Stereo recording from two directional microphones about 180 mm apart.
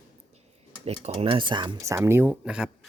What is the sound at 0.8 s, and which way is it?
Speech, 35° right (ahead or behind).